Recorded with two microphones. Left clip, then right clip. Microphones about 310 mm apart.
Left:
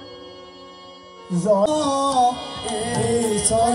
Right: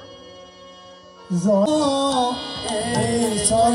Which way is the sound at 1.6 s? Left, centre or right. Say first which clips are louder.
Even; centre.